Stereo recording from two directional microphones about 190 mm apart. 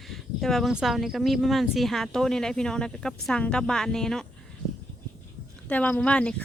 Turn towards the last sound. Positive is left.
turn(degrees=5)  # may be behind; listen again after turning